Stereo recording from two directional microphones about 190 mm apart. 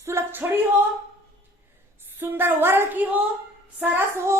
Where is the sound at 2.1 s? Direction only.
10° right (ahead or behind).